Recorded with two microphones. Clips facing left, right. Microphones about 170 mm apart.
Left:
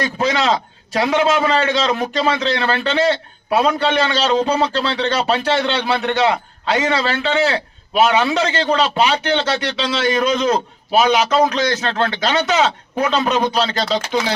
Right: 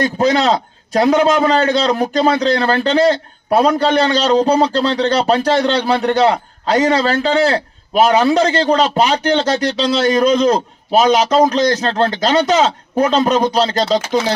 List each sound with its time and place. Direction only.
0.0 s a man's voice: 40° right (ahead or behind)